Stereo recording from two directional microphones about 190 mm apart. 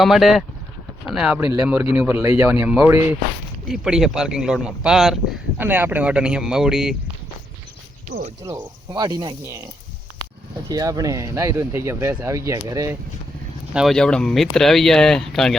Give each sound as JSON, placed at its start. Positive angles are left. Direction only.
{"t": 0.0, "sound": "speech", "side_deg": 0}
{"t": 8.6, "sound": "speech", "side_deg": -25}
{"t": 10.7, "sound": "speech", "side_deg": -20}
{"t": 13.7, "sound": "speech", "side_deg": 0}